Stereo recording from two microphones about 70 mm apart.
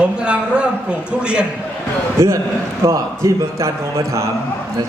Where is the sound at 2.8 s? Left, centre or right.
Right.